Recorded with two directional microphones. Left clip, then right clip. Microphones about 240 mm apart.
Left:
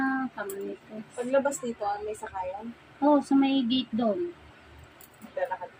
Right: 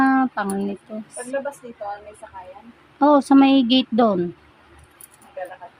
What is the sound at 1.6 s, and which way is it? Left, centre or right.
Speech, left.